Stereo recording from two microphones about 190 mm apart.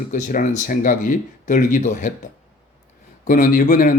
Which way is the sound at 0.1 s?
45° left (ahead or behind).